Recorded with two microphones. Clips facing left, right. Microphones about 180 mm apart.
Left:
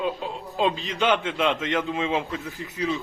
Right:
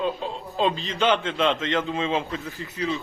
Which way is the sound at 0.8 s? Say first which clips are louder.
Right 1 dB; 15° left (ahead or behind).